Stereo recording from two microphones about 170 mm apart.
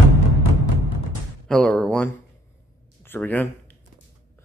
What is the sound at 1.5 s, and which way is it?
Speech, 5° left (ahead or behind).